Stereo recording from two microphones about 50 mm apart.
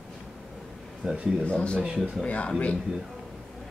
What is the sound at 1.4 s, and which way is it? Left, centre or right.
Speech, left.